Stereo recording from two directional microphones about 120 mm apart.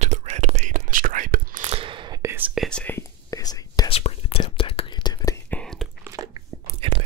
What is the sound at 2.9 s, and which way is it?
Whispering, 30° left (ahead or behind).